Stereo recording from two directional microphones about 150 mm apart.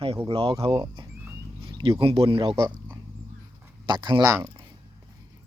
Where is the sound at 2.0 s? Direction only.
40° right (ahead or behind).